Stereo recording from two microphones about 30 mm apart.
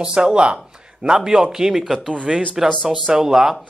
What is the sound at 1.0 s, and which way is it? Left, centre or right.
Speech, centre.